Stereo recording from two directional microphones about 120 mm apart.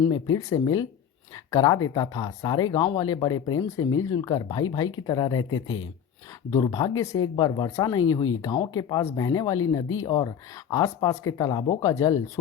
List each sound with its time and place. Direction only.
0.0 s speech: 35° left (ahead or behind)
3.7 s speech: 25° left (ahead or behind)
6.5 s speech: 35° left (ahead or behind)